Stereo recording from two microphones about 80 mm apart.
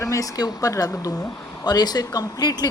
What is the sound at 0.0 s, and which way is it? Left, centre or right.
Speech, left.